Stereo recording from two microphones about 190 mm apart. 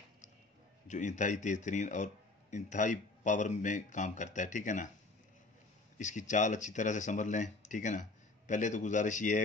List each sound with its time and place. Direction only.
0.8 s speech: 40° left (ahead or behind)
5.9 s speech: 40° left (ahead or behind)